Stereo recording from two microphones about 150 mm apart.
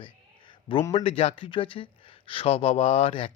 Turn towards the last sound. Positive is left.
turn(degrees=35)  # may be behind; listen again after turning